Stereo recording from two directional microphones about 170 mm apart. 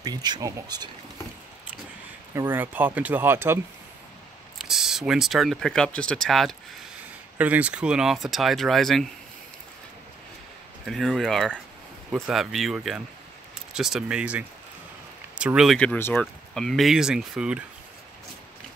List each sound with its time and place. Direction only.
0.0 s speech: 25° right (ahead or behind)
2.3 s speech: 10° right (ahead or behind)
4.6 s speech: centre (ahead or behind)
7.3 s speech: 10° right (ahead or behind)
10.9 s speech: centre (ahead or behind)